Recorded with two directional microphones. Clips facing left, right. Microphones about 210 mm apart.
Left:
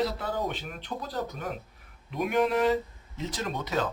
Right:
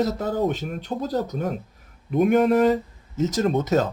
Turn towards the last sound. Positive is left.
turn(degrees=-45)  # may be behind; listen again after turning